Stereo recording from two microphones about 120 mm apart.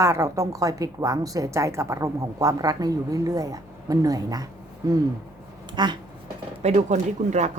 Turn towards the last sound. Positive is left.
turn(degrees=-70)  # may be behind; listen again after turning